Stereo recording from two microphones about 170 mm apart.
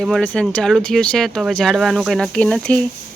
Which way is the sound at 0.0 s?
5° left (ahead or behind).